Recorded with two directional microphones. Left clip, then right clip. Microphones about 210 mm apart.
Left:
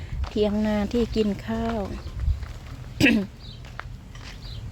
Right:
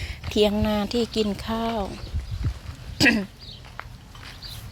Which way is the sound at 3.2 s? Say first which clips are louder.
Even; 15° right (ahead or behind).